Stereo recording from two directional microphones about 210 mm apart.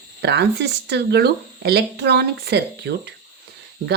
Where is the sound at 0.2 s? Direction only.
55° right (ahead or behind).